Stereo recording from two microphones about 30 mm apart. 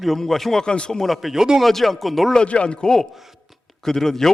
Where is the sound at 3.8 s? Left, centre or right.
Centre.